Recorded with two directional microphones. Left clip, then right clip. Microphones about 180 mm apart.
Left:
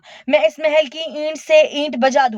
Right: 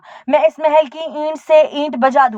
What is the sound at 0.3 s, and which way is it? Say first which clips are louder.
Speech: right 2 dB; 35° left (ahead or behind).